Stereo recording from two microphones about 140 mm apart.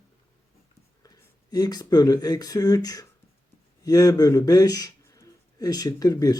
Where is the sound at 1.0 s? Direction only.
25° left (ahead or behind).